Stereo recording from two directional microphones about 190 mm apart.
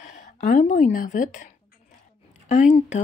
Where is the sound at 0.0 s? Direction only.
40° left (ahead or behind).